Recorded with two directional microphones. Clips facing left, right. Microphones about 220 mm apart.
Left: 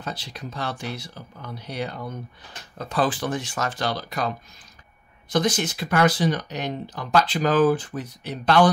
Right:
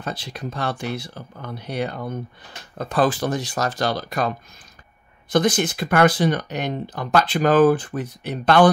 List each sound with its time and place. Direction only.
0.0 s speech: 55° right (ahead or behind)
5.3 s speech: 55° right (ahead or behind)